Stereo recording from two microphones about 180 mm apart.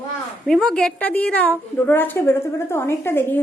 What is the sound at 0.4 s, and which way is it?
A woman's voice, centre (ahead or behind).